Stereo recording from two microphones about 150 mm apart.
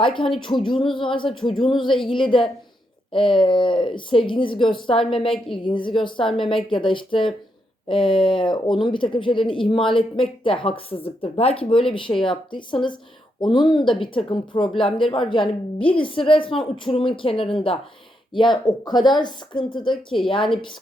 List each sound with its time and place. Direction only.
0.0 s speech: 35° left (ahead or behind)